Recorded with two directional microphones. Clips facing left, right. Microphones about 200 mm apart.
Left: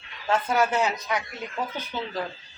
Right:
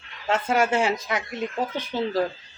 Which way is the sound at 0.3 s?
25° right (ahead or behind).